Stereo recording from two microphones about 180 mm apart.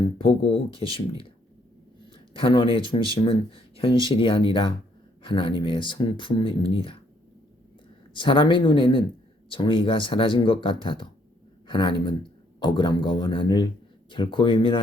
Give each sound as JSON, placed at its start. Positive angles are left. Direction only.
{"t": 0.0, "sound": "speech", "side_deg": 30}
{"t": 2.1, "sound": "a sound", "side_deg": 30}
{"t": 2.9, "sound": "speech", "side_deg": 30}
{"t": 8.1, "sound": "speech", "side_deg": 25}